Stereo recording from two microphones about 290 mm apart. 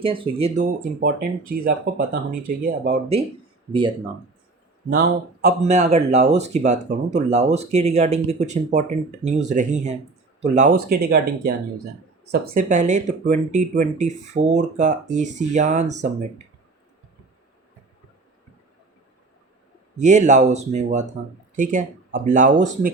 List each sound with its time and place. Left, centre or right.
0.0 s speech: centre
4.9 s speech: right
20.0 s speech: right